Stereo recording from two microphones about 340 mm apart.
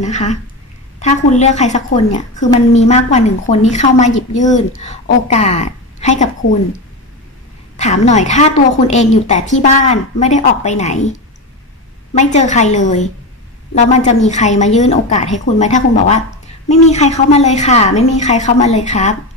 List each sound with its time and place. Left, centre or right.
0.0 s a woman's voice: left
7.7 s a woman's voice: centre
12.2 s a woman's voice: left